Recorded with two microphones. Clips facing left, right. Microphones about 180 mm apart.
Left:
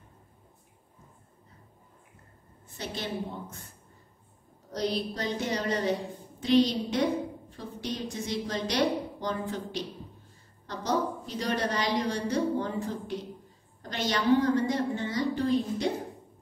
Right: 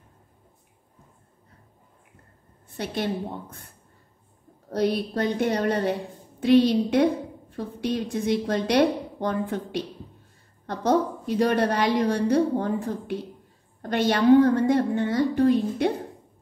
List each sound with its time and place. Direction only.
2.8 s a woman's voice: 55° right (ahead or behind)
4.6 s a woman's voice: 55° right (ahead or behind)